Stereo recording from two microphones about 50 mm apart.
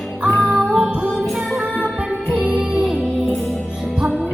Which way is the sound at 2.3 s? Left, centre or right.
Centre.